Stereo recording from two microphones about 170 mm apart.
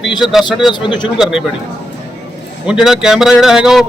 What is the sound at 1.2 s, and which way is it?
Speech, 5° right (ahead or behind).